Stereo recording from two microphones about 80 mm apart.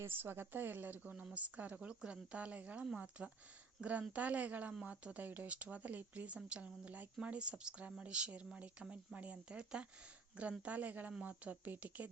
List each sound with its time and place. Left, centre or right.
0.0 s speech: right